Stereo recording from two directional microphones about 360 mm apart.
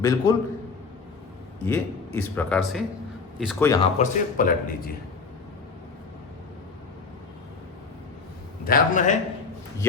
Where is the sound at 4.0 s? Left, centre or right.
Left.